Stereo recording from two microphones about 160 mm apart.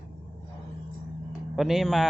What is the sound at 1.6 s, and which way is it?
Speech, centre (ahead or behind).